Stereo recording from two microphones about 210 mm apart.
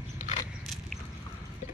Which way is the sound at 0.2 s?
40° left (ahead or behind).